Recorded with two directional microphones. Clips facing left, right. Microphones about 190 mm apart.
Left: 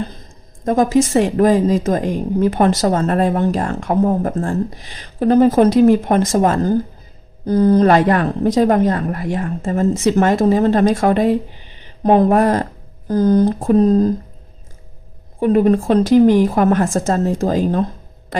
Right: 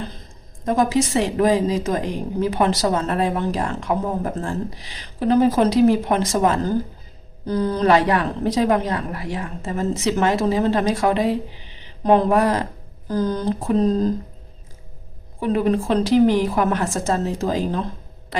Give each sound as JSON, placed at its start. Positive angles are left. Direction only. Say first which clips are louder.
{"t": 0.6, "sound": "a woman's voice", "louder": "left 5 dB", "side_deg": 45}
{"t": 15.4, "sound": "a woman's voice", "louder": "left 6 dB", "side_deg": 45}